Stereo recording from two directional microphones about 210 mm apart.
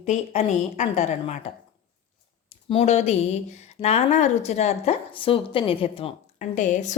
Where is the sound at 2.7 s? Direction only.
30° left (ahead or behind).